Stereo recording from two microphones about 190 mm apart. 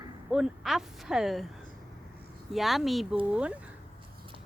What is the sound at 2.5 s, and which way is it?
Speech, centre (ahead or behind).